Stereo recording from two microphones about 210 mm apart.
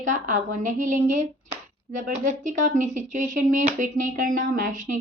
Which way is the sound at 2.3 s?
35° right (ahead or behind).